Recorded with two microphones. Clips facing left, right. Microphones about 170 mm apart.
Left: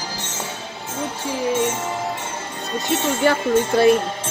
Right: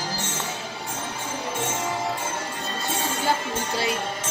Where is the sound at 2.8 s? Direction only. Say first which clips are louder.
Left 7 dB; 70° left (ahead or behind).